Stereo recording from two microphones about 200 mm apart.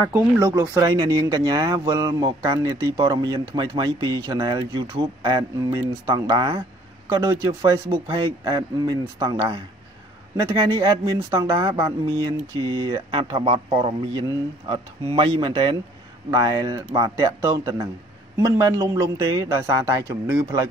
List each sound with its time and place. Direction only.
0.1 s speech: 15° right (ahead or behind)
11.1 s a man's voice: 20° right (ahead or behind)